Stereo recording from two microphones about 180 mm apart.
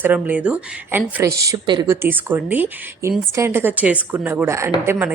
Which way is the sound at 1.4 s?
25° right (ahead or behind).